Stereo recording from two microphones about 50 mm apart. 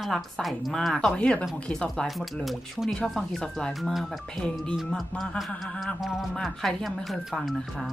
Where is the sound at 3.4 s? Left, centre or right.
Centre.